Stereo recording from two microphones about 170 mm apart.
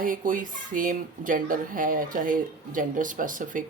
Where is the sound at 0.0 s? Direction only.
50° right (ahead or behind).